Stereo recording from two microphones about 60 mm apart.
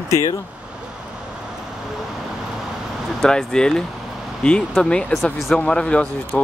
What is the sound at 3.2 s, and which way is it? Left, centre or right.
Speech, centre.